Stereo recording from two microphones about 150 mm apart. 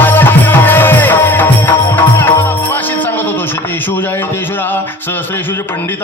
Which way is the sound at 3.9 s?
15° left (ahead or behind).